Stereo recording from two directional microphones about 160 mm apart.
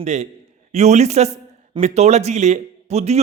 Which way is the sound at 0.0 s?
45° right (ahead or behind).